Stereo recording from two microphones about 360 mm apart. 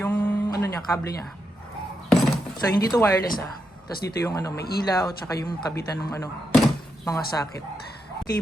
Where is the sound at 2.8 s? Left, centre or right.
Centre.